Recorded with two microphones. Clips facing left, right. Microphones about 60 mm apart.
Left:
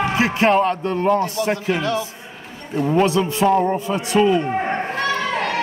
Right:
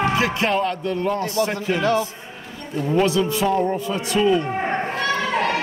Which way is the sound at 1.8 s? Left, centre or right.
Right.